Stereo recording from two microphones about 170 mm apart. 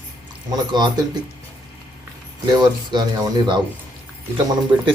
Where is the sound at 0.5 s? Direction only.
25° right (ahead or behind).